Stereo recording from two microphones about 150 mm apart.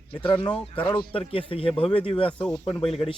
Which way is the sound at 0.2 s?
35° left (ahead or behind).